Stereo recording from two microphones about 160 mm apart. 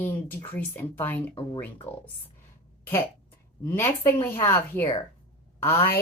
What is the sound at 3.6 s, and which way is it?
A woman's voice, 15° left (ahead or behind).